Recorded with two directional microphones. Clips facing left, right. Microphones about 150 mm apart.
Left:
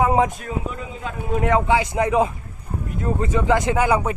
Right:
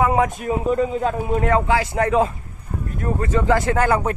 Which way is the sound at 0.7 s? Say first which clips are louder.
Right 11 dB; 40° right (ahead or behind).